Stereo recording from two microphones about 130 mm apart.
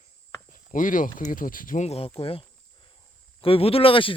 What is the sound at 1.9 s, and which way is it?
Speech, 50° left (ahead or behind).